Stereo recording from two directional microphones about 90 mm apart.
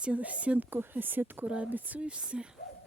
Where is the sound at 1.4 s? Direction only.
10° right (ahead or behind).